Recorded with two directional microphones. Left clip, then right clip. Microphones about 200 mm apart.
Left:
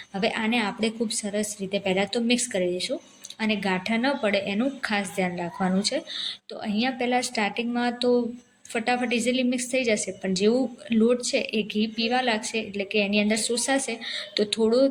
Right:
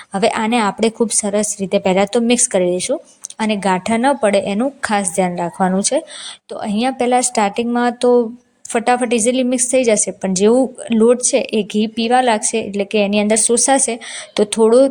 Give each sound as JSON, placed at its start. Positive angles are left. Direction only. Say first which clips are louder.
{"t": 0.1, "sound": "a woman's voice", "louder": "right 10 dB", "side_deg": -45}